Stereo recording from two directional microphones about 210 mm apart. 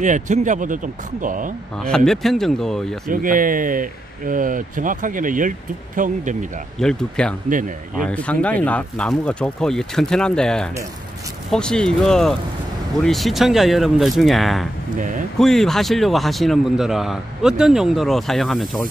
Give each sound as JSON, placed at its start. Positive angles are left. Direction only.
{"t": 0.0, "sound": "speech", "side_deg": -35}
{"t": 1.8, "sound": "speech", "side_deg": 5}
{"t": 3.1, "sound": "speech", "side_deg": -40}
{"t": 6.8, "sound": "speech", "side_deg": 5}
{"t": 7.4, "sound": "speech", "side_deg": -40}
{"t": 8.0, "sound": "speech", "side_deg": 5}